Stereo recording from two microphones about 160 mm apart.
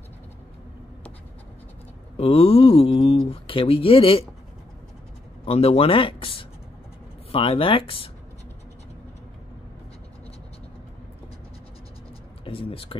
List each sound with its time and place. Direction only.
2.1 s speech: 35° left (ahead or behind)
5.4 s speech: 35° left (ahead or behind)
12.4 s speech: 35° left (ahead or behind)